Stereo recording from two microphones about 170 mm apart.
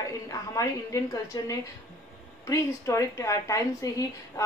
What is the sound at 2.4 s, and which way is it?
A woman's voice, 15° left (ahead or behind).